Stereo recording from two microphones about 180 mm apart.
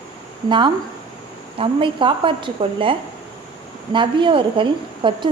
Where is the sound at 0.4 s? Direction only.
25° right (ahead or behind).